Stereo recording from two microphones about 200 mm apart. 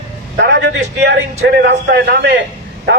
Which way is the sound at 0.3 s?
60° right (ahead or behind).